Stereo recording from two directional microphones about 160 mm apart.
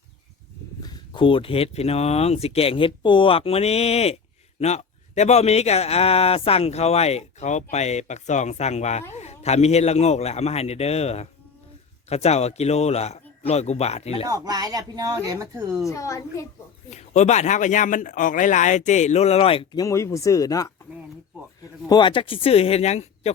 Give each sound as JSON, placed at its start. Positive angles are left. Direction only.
{"t": 0.8, "sound": "a man's voice", "side_deg": 25}
{"t": 14.3, "sound": "speech", "side_deg": -25}
{"t": 15.9, "sound": "speech", "side_deg": 20}
{"t": 16.9, "sound": "a man's voice", "side_deg": 45}
{"t": 19.7, "sound": "speech", "side_deg": 20}